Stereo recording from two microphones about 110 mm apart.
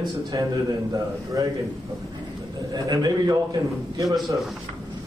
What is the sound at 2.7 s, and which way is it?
A man's voice, 40° right (ahead or behind).